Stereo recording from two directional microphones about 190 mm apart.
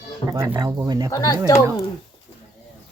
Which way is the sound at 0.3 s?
10° right (ahead or behind).